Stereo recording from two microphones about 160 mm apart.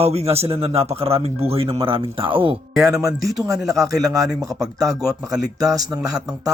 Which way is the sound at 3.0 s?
20° right (ahead or behind).